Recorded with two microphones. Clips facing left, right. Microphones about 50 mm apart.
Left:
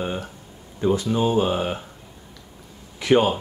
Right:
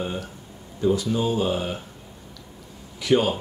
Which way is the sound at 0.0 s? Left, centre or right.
Left.